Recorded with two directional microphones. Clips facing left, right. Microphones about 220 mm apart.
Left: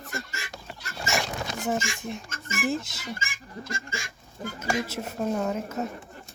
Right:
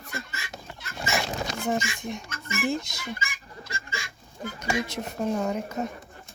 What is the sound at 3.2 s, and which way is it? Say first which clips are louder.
Goose: left 1 dB; 45° left (ahead or behind).